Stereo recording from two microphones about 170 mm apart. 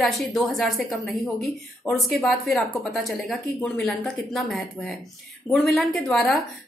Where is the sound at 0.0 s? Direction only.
Centre (ahead or behind).